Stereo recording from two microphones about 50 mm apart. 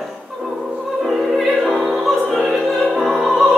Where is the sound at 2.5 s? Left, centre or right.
Centre.